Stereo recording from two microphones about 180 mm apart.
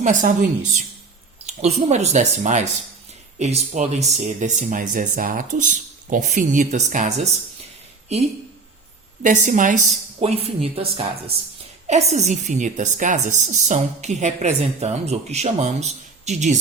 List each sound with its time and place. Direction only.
0.0 s speech: 45° right (ahead or behind)
1.8 s a woman's voice: 40° right (ahead or behind)
8.1 s a woman's voice: 35° right (ahead or behind)